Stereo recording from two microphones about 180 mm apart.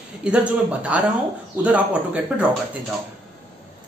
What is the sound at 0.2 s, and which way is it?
Speech, 5° right (ahead or behind).